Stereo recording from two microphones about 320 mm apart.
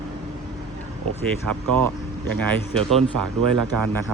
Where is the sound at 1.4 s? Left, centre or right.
Centre.